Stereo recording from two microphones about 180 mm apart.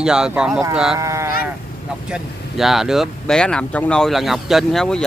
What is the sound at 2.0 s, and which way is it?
Speech, 5° right (ahead or behind).